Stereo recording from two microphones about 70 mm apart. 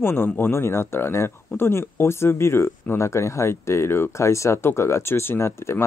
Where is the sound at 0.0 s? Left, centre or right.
Left.